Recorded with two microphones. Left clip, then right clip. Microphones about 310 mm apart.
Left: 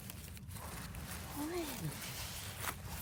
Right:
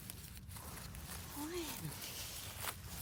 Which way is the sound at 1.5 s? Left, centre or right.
Centre.